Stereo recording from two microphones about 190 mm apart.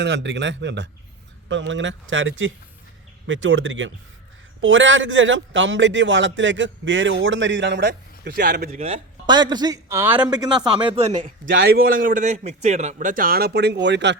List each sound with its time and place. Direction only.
0.0 s a man's voice: 65° right (ahead or behind)
8.6 s a man's voice: 35° right (ahead or behind)
11.5 s a man's voice: 50° right (ahead or behind); by 14.2 s 65° right (ahead or behind)